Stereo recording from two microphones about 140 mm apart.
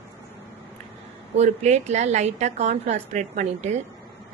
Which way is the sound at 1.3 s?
55° right (ahead or behind).